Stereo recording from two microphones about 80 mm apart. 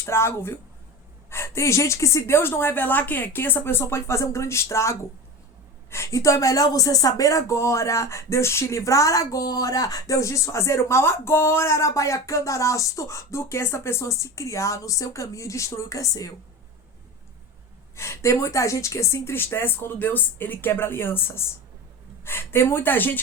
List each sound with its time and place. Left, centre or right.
0.0 s speech: left
17.9 s speech: left